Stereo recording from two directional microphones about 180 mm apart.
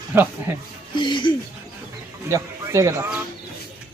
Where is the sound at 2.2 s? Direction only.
15° right (ahead or behind).